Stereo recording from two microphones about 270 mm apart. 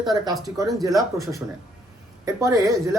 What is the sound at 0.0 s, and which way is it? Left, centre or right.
Speech, centre.